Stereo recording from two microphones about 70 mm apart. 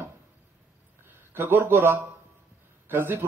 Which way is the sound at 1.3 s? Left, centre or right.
Right.